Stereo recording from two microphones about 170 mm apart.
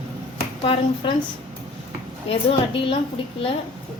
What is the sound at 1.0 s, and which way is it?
Speech, 30° left (ahead or behind).